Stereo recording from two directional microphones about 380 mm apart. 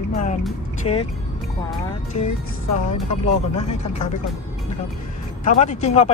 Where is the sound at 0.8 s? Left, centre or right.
Centre.